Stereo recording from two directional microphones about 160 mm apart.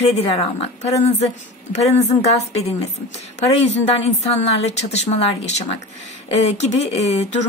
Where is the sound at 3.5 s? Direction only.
40° left (ahead or behind).